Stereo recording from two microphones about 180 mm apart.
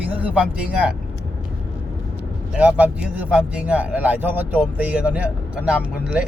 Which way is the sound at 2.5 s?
5° right (ahead or behind).